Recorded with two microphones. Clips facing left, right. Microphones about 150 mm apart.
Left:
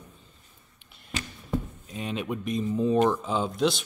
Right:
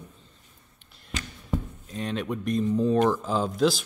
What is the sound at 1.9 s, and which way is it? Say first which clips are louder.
Speech: right 2 dB; 5° left (ahead or behind).